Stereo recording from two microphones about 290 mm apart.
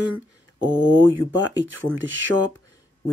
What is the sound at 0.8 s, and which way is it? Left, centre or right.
Speech, right.